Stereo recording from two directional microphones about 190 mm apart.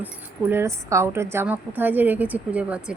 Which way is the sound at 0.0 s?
10° right (ahead or behind).